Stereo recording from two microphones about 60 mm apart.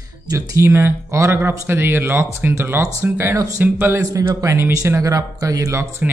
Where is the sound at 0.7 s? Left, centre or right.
Right.